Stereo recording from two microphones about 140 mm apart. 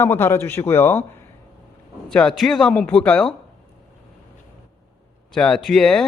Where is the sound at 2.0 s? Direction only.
5° left (ahead or behind).